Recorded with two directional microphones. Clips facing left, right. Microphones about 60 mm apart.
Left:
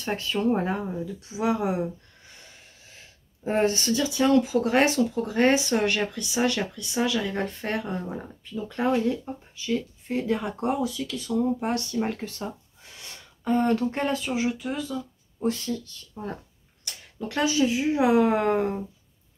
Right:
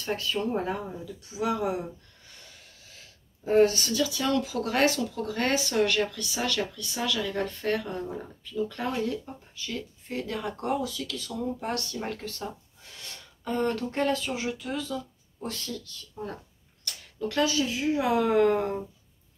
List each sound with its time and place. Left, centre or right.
0.0 s speech: left
3.4 s speech: left